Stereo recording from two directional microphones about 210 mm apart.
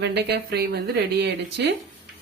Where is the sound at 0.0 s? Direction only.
50° right (ahead or behind).